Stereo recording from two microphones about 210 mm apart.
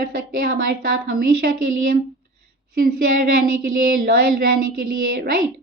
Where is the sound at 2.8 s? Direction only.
45° right (ahead or behind).